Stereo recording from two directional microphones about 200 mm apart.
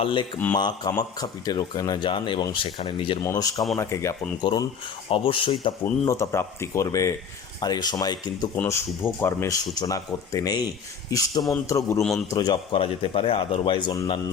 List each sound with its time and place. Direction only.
0.0 s a man's voice: 25° left (ahead or behind)
5.8 s a man's voice: 15° left (ahead or behind)